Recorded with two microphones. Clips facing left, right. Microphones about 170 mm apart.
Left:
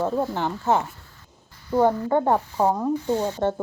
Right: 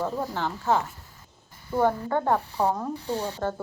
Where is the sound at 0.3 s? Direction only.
20° left (ahead or behind).